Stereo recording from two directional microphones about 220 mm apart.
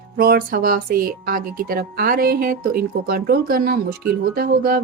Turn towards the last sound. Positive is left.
turn(degrees=-40)  # may be behind; listen again after turning